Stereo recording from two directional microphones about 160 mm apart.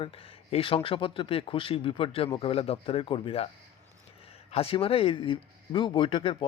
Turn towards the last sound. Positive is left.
turn(degrees=30)  # may be behind; listen again after turning